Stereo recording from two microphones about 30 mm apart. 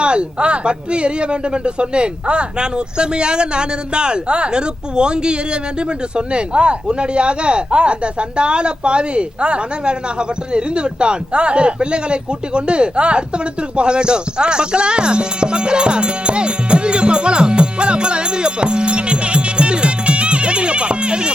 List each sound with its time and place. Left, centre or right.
0.0 s speech: right